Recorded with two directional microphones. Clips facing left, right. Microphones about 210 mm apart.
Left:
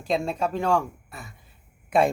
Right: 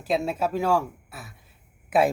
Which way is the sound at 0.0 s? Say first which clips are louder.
Even; 5° right (ahead or behind).